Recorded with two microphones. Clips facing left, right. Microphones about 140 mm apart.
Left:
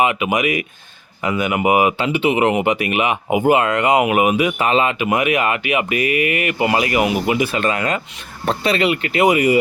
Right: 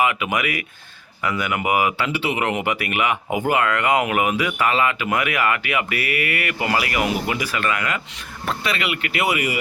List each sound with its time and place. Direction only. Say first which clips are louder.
0.0 s speech: left 4 dB; 20° left (ahead or behind)